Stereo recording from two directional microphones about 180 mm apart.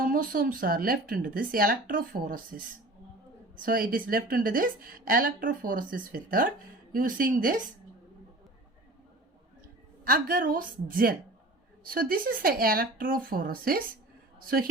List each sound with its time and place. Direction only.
0.0 s speech: 50° right (ahead or behind)
10.0 s a woman's voice: 55° right (ahead or behind)